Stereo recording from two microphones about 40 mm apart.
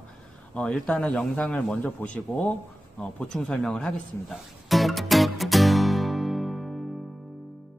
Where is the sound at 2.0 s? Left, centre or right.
Left.